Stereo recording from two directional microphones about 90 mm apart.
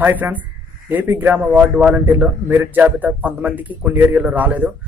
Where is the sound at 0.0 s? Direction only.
20° right (ahead or behind).